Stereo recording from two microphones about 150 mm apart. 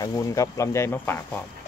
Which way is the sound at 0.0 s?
20° left (ahead or behind).